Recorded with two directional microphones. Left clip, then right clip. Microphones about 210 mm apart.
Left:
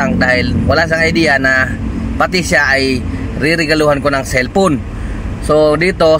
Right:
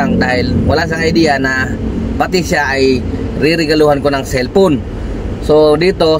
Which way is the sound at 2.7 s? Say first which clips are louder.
Right 1 dB; 35° right (ahead or behind).